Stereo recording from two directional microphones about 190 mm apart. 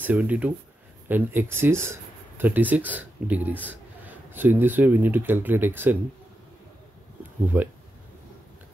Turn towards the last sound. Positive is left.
turn(degrees=-10)  # may be behind; listen again after turning